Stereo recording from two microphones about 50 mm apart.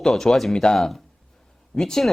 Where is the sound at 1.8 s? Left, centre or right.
Centre.